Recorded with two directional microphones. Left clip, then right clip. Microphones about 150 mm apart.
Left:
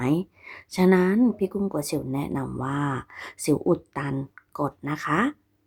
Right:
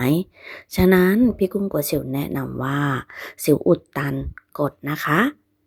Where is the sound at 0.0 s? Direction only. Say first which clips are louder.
Right 4 dB; 25° right (ahead or behind).